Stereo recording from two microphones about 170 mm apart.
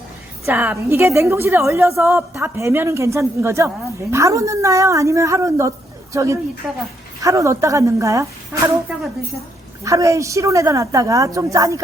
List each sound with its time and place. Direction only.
0.4 s a woman's voice: 10° right (ahead or behind)
6.6 s a woman's voice: 5° right (ahead or behind)
7.2 s a woman's voice: 20° right (ahead or behind)
9.8 s a woman's voice: 20° right (ahead or behind)